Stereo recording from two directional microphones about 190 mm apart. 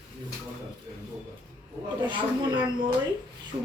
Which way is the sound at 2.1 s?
25° right (ahead or behind).